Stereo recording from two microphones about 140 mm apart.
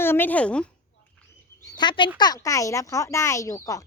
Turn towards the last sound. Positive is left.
turn(degrees=25)  # may be behind; listen again after turning